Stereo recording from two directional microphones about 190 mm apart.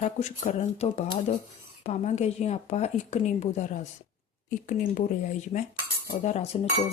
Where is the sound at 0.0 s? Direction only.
40° left (ahead or behind).